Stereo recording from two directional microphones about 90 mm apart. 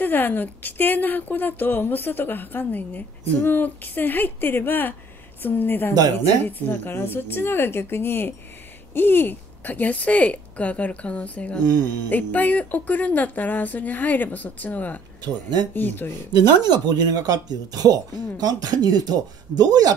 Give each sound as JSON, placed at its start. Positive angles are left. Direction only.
{"t": 0.0, "sound": "a woman's voice", "side_deg": 20}
{"t": 11.6, "sound": "speech", "side_deg": -50}
{"t": 12.1, "sound": "speech", "side_deg": 20}
{"t": 16.6, "sound": "speech", "side_deg": -50}